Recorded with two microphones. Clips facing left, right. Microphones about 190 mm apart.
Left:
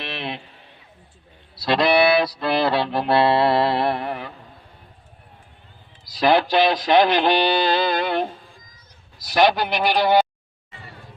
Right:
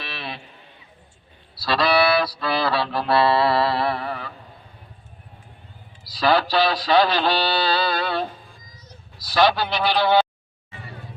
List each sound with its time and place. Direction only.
0.0 s music: 20° left (ahead or behind)
1.5 s music: 20° left (ahead or behind)
6.1 s music: 20° left (ahead or behind)
9.1 s speech: 20° left (ahead or behind)